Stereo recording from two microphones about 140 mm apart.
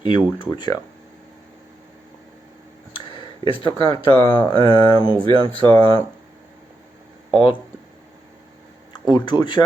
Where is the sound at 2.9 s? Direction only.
40° left (ahead or behind).